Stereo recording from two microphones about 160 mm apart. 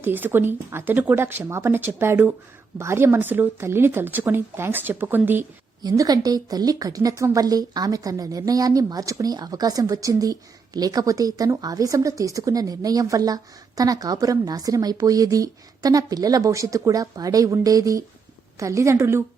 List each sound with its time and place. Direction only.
0.0 s speech: 10° right (ahead or behind)
5.8 s speech: 25° right (ahead or behind)